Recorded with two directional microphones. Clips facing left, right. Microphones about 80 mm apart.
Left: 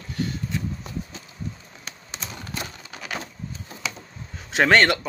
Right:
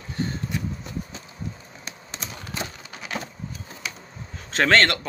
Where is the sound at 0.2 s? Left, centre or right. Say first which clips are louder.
Even; right.